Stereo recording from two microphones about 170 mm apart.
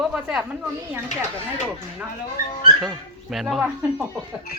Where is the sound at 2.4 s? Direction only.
55° left (ahead or behind).